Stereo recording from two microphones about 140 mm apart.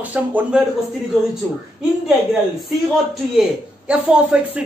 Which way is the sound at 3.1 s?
5° right (ahead or behind).